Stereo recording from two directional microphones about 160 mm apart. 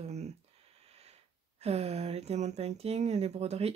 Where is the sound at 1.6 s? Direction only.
40° right (ahead or behind).